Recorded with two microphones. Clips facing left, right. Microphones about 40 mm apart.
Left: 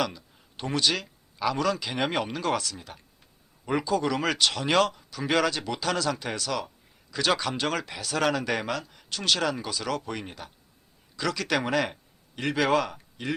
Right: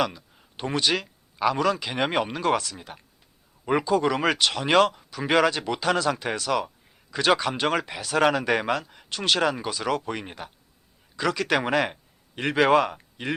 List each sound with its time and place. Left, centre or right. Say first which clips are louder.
0.0 s speech: right 3 dB; centre